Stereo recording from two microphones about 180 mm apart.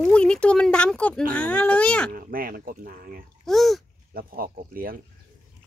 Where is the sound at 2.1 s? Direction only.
55° right (ahead or behind).